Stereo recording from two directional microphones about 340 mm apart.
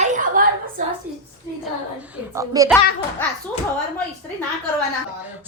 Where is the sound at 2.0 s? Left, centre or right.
Centre.